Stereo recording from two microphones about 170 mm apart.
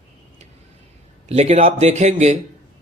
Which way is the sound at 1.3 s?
40° right (ahead or behind).